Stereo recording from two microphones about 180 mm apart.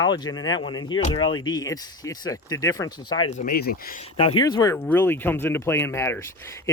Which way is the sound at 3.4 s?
55° left (ahead or behind).